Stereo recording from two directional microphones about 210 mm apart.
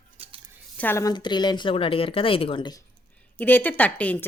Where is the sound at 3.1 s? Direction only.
5° left (ahead or behind).